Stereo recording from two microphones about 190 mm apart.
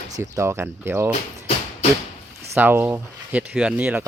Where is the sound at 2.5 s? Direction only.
10° right (ahead or behind).